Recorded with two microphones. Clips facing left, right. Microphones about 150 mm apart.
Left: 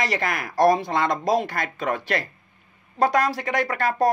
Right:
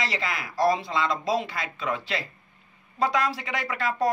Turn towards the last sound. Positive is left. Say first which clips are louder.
# left 4 dB
turn(degrees=40)  # may be behind; listen again after turning